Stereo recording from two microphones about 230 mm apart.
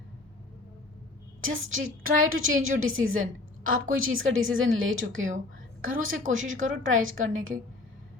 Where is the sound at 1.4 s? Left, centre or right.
Right.